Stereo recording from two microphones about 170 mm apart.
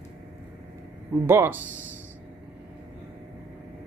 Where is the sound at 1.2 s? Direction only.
15° right (ahead or behind).